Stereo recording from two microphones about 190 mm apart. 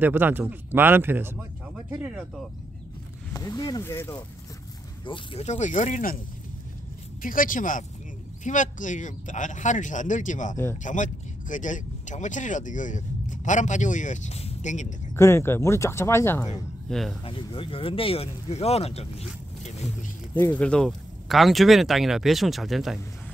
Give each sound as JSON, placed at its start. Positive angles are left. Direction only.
{"t": 0.0, "sound": "speech", "side_deg": -10}
{"t": 3.3, "sound": "speech", "side_deg": 20}
{"t": 5.0, "sound": "speech", "side_deg": 25}
{"t": 7.2, "sound": "speech", "side_deg": 45}
{"t": 15.1, "sound": "speech", "side_deg": 15}
{"t": 16.9, "sound": "speech", "side_deg": 0}
{"t": 17.2, "sound": "speech", "side_deg": 30}
{"t": 20.3, "sound": "speech", "side_deg": 10}